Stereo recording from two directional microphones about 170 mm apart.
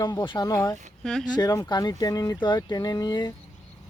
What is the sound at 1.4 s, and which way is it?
Speech, 20° left (ahead or behind).